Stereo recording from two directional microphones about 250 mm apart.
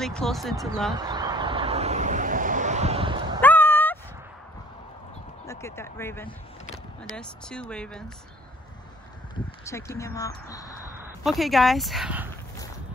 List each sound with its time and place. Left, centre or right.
0.0 s speech: centre
0.9 s vehicle: centre
3.3 s a sound: centre
5.5 s speech: centre
9.3 s speech: centre
11.2 s speech: centre